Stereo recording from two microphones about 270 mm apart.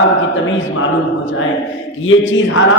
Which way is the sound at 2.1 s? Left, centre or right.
Left.